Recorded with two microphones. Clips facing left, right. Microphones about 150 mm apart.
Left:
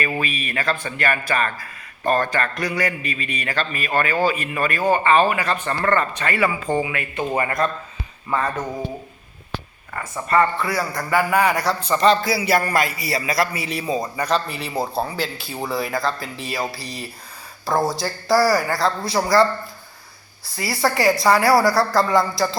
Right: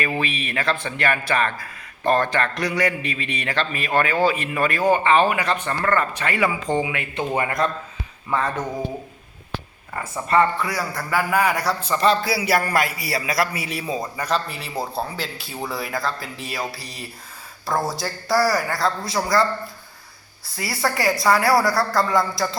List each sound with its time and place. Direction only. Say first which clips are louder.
0.0 s speech: even; 5° left (ahead or behind)
3.0 s a man's voice: even; 90° right
3.4 s a man's voice: right 1 dB; 10° left (ahead or behind)
4.7 s speech: left 1 dB; 15° right (ahead or behind)
5.6 s speech: left 1 dB; centre (ahead or behind)
8.3 s speech: even; 10° left (ahead or behind)
10.6 s a man's voice: left 2 dB; 10° right (ahead or behind)
20.4 s a man's voice: left 3 dB; centre (ahead or behind)